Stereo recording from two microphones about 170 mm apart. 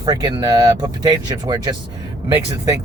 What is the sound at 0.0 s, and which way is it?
Speech, 25° right (ahead or behind).